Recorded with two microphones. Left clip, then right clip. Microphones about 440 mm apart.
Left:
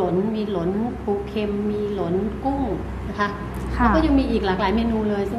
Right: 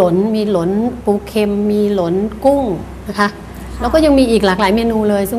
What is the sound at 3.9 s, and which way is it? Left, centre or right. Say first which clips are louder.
A woman's voice: right 11 dB; right.